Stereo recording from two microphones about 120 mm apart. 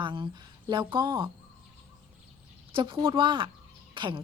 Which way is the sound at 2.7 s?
45° right (ahead or behind).